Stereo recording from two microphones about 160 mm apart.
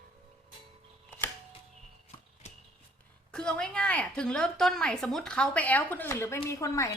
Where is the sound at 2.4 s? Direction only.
45° left (ahead or behind).